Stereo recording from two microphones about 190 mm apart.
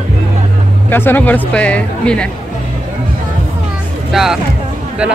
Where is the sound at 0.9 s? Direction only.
10° left (ahead or behind).